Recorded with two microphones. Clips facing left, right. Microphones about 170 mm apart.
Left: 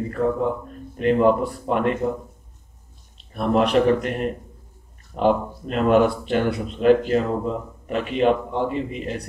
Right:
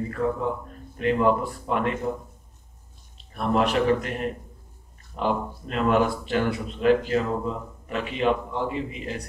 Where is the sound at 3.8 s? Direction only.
45° left (ahead or behind).